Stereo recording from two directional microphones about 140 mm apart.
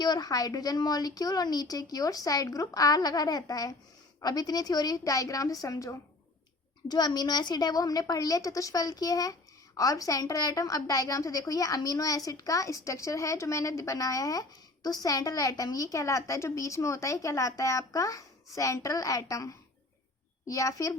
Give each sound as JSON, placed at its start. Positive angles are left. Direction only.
{"t": 0.0, "sound": "a woman's voice", "side_deg": 30}